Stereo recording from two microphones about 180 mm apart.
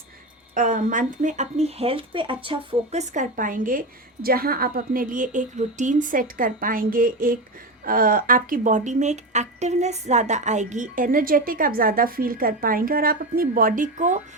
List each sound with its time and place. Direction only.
0.5 s speech: 45° right (ahead or behind)